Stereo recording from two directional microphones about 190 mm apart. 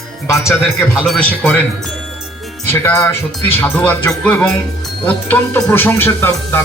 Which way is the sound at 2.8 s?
15° left (ahead or behind).